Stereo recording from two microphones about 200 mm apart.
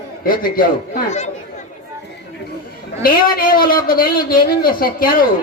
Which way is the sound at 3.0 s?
45° left (ahead or behind).